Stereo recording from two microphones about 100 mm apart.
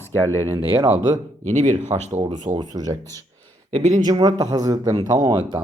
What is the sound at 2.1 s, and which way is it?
Speech, 90° right.